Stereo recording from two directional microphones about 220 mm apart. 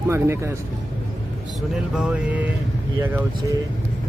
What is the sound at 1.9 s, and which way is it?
Speech, 5° right (ahead or behind).